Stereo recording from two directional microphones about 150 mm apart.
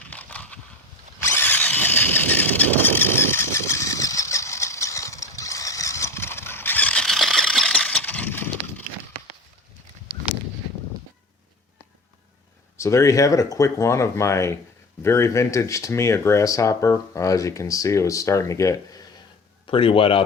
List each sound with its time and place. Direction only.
0.0 s a sound: 10° left (ahead or behind)
1.2 s vehicle: 15° left (ahead or behind)
12.7 s speech: 20° left (ahead or behind)
19.6 s speech: 35° left (ahead or behind)